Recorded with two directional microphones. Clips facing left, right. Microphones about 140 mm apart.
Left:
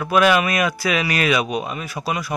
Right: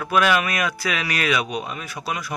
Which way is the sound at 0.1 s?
10° left (ahead or behind).